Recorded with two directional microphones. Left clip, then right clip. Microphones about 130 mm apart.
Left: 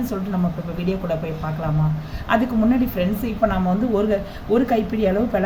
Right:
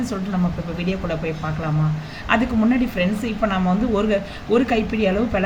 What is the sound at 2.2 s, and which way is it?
Speech, 30° left (ahead or behind).